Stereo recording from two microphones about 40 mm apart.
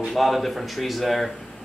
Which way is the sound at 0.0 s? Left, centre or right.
Centre.